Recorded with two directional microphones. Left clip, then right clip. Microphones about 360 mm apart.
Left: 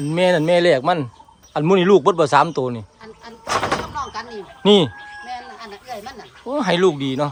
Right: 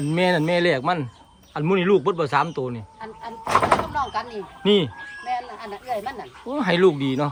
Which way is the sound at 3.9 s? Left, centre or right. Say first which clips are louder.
Right 2 dB; right.